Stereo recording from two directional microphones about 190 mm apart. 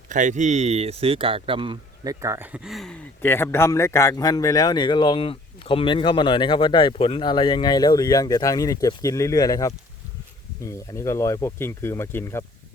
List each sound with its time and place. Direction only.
0.1 s speech: 40° right (ahead or behind)
2.2 s speech: 10° right (ahead or behind); by 12.5 s 15° left (ahead or behind)